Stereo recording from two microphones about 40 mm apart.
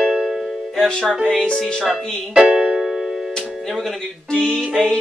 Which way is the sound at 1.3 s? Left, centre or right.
Centre.